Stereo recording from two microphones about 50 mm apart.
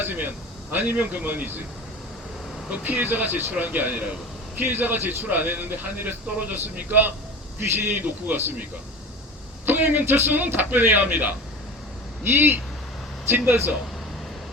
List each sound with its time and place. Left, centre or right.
0.0 s a man's voice: right
2.6 s a man's voice: right
9.6 s a man's voice: right